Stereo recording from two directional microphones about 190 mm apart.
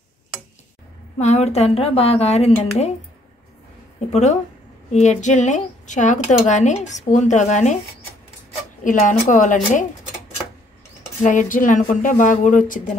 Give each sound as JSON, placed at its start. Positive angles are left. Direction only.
{"t": 1.1, "sound": "a woman's voice", "side_deg": 35}
{"t": 4.1, "sound": "a woman's voice", "side_deg": 35}
{"t": 8.8, "sound": "speech", "side_deg": 45}
{"t": 11.2, "sound": "speech", "side_deg": 45}